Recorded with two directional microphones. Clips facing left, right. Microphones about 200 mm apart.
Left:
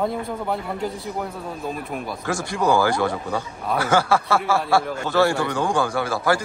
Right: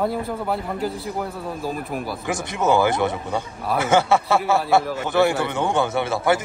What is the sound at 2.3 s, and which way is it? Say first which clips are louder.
A man's voice: even; 20° right (ahead or behind).